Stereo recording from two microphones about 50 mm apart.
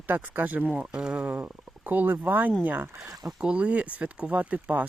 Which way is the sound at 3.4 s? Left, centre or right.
Right.